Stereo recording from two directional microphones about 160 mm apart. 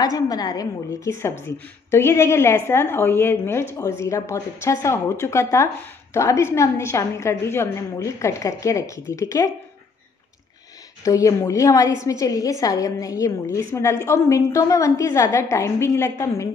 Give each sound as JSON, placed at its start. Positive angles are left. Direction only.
{"t": 0.0, "sound": "a woman's voice", "side_deg": 25}
{"t": 11.1, "sound": "a woman's voice", "side_deg": 20}